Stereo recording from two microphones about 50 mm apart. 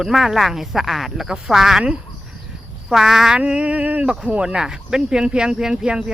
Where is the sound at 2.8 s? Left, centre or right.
Centre.